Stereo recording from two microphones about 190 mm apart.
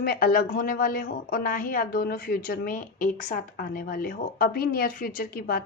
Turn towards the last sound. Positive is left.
turn(degrees=50)  # may be behind; listen again after turning